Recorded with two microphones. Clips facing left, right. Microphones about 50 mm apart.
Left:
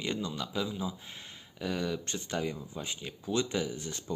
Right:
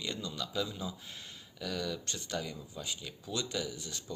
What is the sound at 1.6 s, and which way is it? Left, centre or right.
Speech, left.